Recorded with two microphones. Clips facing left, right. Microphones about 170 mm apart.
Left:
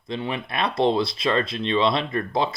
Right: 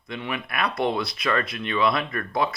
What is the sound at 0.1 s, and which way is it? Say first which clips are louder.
Speech: left 3 dB; 30° left (ahead or behind).